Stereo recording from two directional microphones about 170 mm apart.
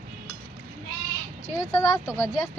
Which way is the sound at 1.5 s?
20° left (ahead or behind).